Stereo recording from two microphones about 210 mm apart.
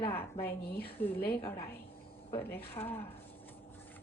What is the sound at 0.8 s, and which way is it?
Speech, 50° left (ahead or behind).